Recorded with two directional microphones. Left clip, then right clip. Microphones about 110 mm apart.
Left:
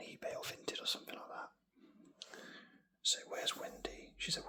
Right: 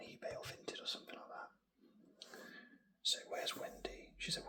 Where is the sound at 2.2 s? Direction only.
30° left (ahead or behind).